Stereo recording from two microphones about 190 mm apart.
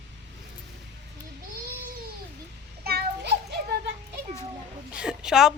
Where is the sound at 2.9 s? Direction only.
60° right (ahead or behind).